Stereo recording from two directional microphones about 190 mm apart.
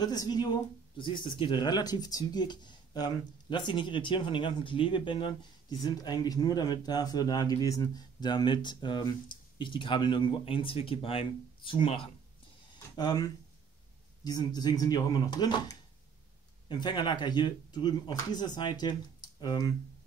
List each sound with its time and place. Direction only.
0.0 s speech: 20° left (ahead or behind)